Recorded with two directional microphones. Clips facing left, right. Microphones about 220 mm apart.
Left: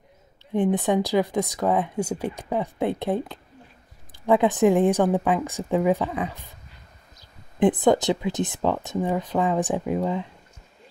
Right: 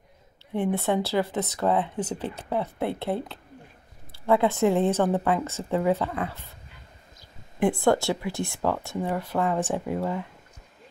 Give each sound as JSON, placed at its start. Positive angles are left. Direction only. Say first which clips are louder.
{"t": 0.5, "sound": "speech", "louder": "left 3 dB", "side_deg": 15}
{"t": 7.5, "sound": "speech", "louder": "left 3 dB", "side_deg": 20}